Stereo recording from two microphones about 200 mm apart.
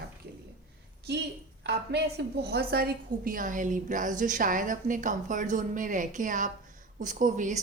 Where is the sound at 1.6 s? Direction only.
55° right (ahead or behind).